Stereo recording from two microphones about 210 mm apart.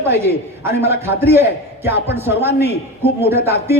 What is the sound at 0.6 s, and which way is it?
A man's voice, 10° right (ahead or behind).